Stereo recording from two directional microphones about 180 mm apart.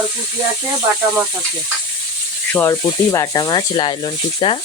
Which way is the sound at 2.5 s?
15° left (ahead or behind).